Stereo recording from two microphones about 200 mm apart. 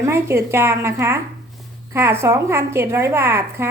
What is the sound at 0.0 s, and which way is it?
A woman's voice, 10° right (ahead or behind).